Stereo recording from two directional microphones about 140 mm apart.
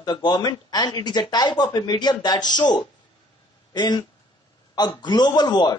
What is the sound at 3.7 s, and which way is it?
Speech, 30° left (ahead or behind).